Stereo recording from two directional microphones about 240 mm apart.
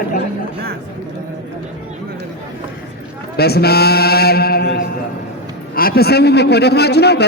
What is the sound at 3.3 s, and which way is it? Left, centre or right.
A man's voice, left.